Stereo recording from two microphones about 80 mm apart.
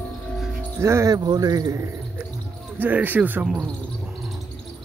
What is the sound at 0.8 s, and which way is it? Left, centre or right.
Speech, right.